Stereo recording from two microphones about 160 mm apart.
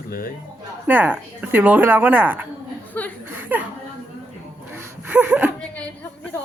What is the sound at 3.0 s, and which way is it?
Speech, 10° left (ahead or behind).